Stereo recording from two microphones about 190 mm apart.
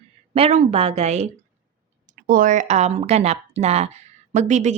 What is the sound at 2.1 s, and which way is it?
Speech, 45° right (ahead or behind).